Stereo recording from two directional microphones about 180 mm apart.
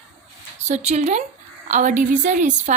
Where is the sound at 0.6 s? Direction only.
40° right (ahead or behind).